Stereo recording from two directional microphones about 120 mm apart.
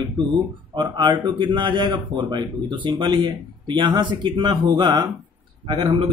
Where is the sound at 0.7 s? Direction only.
40° right (ahead or behind).